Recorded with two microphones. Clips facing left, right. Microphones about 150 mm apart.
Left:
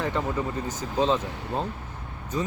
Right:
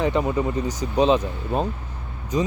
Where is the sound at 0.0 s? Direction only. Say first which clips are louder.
Right 6 dB; 15° right (ahead or behind).